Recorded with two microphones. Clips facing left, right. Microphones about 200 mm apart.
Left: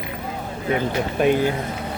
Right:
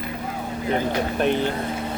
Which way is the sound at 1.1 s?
10° left (ahead or behind).